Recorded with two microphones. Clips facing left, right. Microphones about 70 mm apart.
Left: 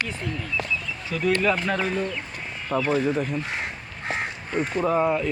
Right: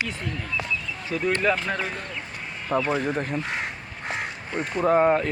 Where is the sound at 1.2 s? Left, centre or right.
Right.